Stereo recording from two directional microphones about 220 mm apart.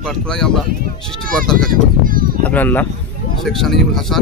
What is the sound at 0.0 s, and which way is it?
Speech, 5° left (ahead or behind).